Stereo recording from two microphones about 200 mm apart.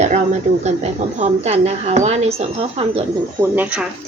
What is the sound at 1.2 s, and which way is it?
A woman's voice, 35° right (ahead or behind).